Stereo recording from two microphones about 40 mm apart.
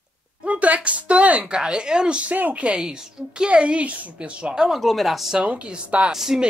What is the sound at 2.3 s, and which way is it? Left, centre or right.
A woman's voice, right.